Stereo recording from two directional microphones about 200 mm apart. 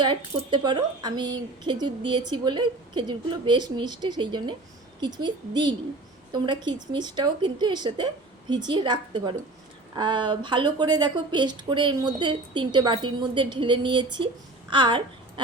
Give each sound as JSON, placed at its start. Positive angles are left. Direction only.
{"t": 0.0, "sound": "speech", "side_deg": -25}